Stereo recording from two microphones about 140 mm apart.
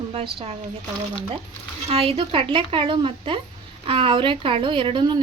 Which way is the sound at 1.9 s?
45° right (ahead or behind).